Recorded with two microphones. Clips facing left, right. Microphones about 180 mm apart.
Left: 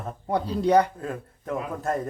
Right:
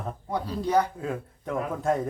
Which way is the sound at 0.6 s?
65° left (ahead or behind).